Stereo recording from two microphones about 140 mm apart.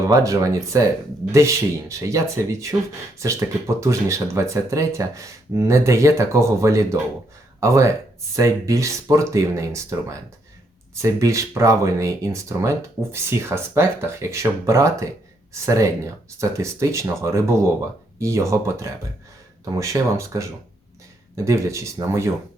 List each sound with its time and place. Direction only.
0.0 s speech: 20° right (ahead or behind)